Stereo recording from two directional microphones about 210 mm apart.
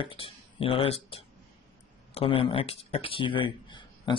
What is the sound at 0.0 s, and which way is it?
Speech, 25° left (ahead or behind).